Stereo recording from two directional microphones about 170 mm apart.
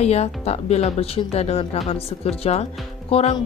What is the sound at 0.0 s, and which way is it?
Speech, 40° left (ahead or behind).